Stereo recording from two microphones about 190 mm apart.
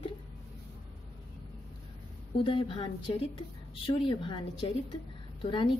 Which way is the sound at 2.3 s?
30° left (ahead or behind).